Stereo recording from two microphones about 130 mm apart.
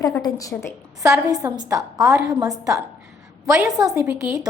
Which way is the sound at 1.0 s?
25° right (ahead or behind).